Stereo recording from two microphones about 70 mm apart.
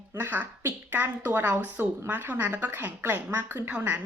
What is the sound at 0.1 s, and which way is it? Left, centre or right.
Speech, right.